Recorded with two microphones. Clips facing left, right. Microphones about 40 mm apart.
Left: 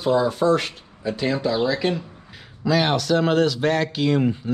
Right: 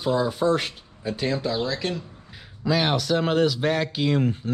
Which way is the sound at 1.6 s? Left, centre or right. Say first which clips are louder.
Left 6 dB; centre.